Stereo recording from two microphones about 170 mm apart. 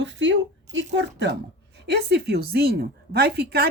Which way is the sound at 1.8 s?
75° right (ahead or behind).